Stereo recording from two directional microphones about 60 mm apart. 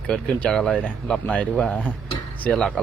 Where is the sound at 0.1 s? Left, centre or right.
Centre.